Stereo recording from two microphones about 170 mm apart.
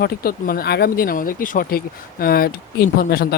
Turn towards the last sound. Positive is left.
turn(degrees=60)  # may be behind; listen again after turning